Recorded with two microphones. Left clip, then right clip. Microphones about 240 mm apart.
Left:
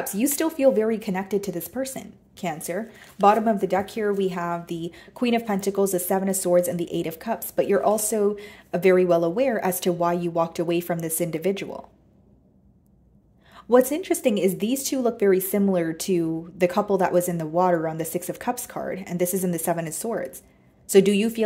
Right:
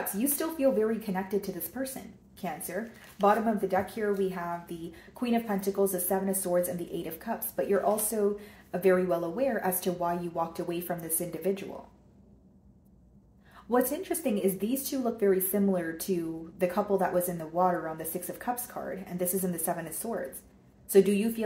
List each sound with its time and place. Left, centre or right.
0.2 s speech: left
13.7 s speech: left